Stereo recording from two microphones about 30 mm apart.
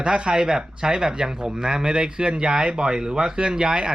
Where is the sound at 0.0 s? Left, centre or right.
Right.